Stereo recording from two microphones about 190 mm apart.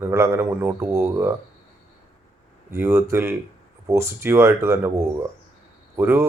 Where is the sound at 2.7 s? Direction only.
15° right (ahead or behind).